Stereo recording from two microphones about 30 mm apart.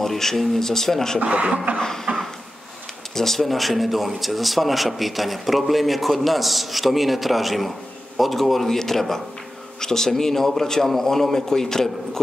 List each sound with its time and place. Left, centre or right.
0.0 s a man's voice: centre
1.2 s speech: right
2.1 s a sound: right
3.2 s a man's voice: centre